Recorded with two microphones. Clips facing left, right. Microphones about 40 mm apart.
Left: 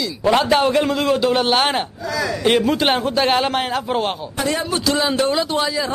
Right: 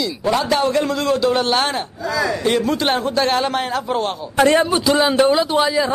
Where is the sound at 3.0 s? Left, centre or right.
Centre.